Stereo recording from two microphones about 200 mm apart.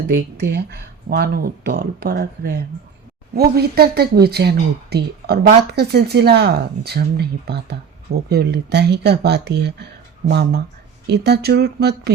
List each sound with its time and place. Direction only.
0.1 s speech: 55° right (ahead or behind)